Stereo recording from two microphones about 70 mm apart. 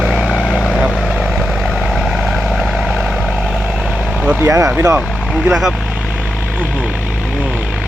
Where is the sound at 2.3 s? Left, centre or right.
Centre.